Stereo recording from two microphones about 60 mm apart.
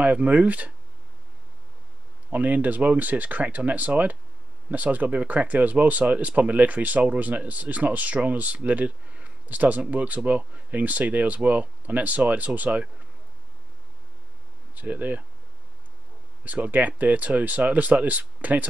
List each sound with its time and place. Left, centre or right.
0.0 s speech: right
2.3 s speech: right
14.8 s speech: right
16.4 s speech: right